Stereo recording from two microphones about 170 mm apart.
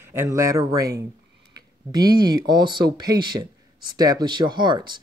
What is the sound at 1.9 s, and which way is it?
Speech, 25° right (ahead or behind).